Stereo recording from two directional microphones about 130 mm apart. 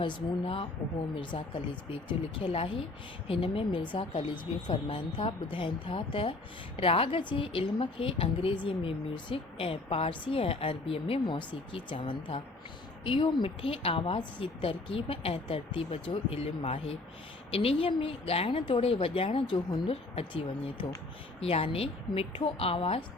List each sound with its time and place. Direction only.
0.0 s speech: 40° left (ahead or behind)